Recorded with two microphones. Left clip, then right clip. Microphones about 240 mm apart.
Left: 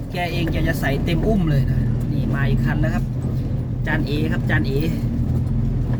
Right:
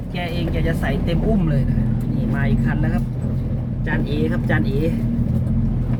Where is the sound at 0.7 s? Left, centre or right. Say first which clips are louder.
Even; centre.